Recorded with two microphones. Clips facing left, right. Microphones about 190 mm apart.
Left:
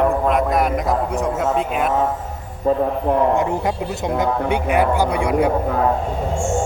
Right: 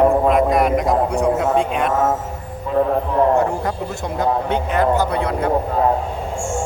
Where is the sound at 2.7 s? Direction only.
40° left (ahead or behind).